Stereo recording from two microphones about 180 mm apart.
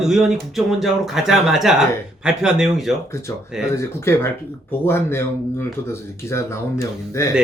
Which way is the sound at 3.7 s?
15° left (ahead or behind).